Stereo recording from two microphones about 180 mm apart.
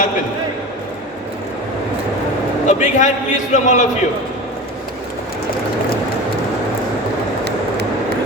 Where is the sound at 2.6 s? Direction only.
40° left (ahead or behind).